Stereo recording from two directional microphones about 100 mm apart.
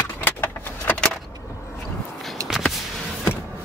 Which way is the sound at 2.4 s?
35° right (ahead or behind).